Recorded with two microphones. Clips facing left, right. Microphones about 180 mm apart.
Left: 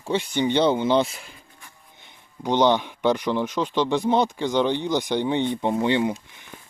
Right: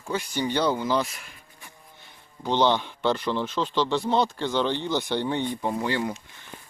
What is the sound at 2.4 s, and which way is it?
Speech, 15° left (ahead or behind).